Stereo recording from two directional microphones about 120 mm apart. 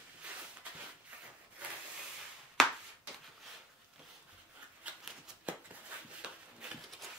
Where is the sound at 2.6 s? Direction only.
5° left (ahead or behind).